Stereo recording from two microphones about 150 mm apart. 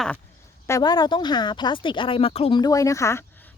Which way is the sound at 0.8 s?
30° left (ahead or behind).